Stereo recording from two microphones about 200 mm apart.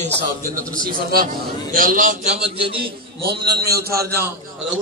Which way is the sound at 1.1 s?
45° right (ahead or behind).